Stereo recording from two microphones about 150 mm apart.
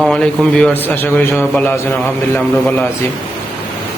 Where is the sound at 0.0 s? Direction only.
5° left (ahead or behind).